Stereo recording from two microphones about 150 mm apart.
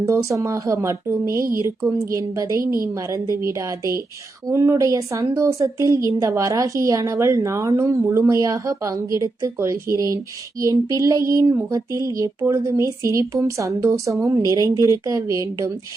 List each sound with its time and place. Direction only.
0.0 s speech: 20° right (ahead or behind)